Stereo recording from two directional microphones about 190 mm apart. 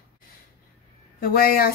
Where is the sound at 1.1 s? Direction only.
50° left (ahead or behind).